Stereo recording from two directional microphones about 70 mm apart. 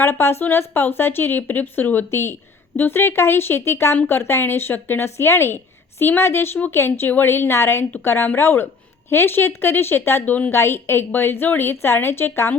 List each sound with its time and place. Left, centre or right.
0.0 s speech: left